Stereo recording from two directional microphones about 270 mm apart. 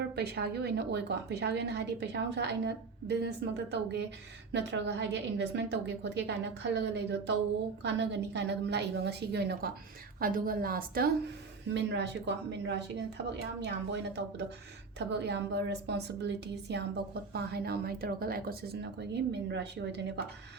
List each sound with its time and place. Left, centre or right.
0.0 s a woman's voice: right